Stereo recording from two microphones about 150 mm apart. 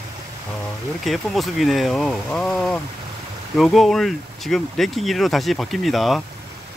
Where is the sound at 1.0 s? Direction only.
Centre (ahead or behind).